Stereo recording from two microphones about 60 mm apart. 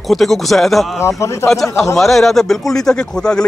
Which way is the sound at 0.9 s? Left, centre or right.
Left.